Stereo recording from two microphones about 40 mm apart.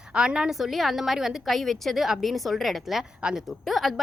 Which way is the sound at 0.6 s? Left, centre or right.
Centre.